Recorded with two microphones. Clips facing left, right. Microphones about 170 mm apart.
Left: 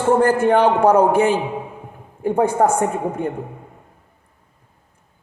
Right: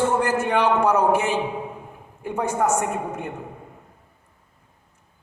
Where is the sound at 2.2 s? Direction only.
50° left (ahead or behind).